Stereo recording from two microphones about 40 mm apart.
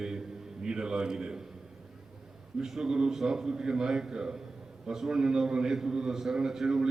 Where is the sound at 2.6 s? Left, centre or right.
Centre.